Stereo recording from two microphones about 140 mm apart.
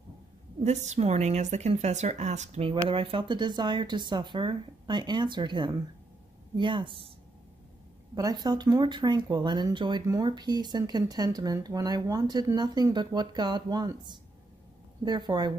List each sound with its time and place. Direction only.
0.7 s a woman's voice: 55° right (ahead or behind)
2.7 s speech: 40° right (ahead or behind)
8.1 s speech: 30° right (ahead or behind)